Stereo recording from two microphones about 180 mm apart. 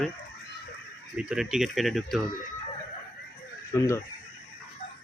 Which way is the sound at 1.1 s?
5° right (ahead or behind).